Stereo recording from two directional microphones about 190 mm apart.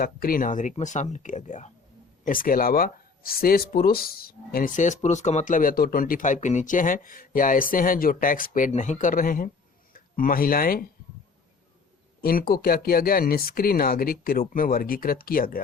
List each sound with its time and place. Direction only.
0.0 s speech: 50° left (ahead or behind)
12.2 s speech: 50° left (ahead or behind)